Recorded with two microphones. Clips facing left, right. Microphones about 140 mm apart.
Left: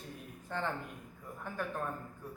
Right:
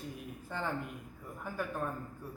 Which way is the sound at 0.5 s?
5° right (ahead or behind).